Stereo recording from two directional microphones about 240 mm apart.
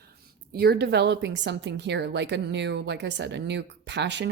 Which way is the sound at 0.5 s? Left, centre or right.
Right.